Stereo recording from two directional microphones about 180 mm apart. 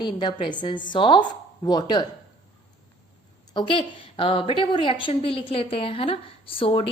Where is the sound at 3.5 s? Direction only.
30° left (ahead or behind).